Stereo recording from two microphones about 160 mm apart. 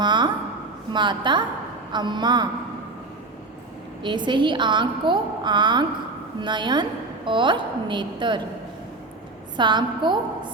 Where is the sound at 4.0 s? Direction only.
30° right (ahead or behind).